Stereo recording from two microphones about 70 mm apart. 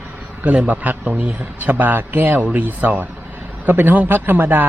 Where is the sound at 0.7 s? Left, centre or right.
Right.